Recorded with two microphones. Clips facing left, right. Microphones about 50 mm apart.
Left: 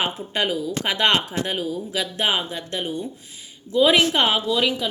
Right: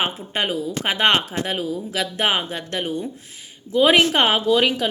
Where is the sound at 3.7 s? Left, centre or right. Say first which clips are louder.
Right 1 dB; right.